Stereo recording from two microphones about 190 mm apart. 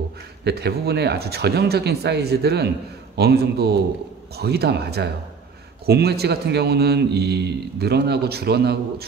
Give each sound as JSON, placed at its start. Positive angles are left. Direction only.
{"t": 0.4, "sound": "a man's voice", "side_deg": -60}